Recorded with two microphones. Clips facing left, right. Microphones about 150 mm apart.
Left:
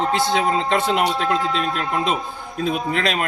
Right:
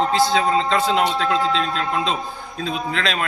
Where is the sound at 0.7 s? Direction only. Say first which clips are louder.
Even; 60° left (ahead or behind).